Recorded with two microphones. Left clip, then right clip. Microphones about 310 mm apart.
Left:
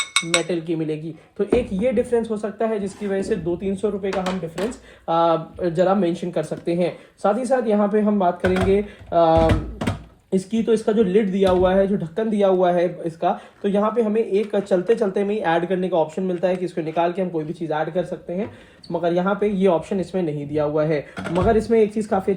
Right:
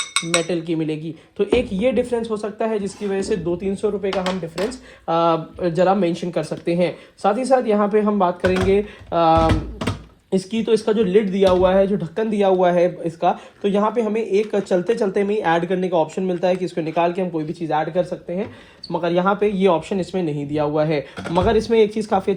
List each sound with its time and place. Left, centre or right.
0.0 s cutlery: centre
0.4 s speech: right
8.4 s speech: centre
8.7 s speech: centre
9.5 s typing: centre
10.5 s speech: right
21.2 s speech: centre